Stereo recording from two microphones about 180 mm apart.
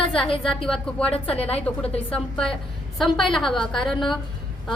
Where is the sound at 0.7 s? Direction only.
5° left (ahead or behind).